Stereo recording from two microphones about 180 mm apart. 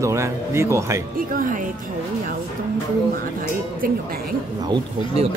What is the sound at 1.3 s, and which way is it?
Speech, 50° right (ahead or behind).